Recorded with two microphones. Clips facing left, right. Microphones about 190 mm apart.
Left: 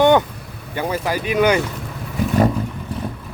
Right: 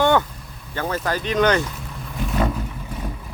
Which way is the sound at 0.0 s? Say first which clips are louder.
Left 4 dB; 20° left (ahead or behind).